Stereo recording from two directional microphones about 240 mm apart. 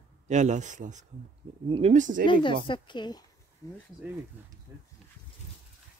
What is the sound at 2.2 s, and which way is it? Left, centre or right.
A woman's voice, centre.